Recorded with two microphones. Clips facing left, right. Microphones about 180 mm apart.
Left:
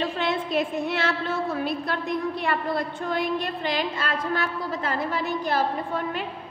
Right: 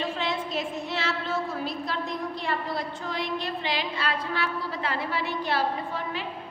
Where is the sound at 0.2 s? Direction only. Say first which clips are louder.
Left 5 dB; 60° left (ahead or behind).